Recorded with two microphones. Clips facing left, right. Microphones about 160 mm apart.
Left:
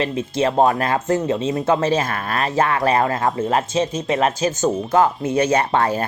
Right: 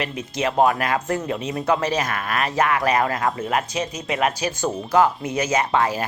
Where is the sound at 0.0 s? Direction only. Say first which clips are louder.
Left 5 dB; 30° left (ahead or behind).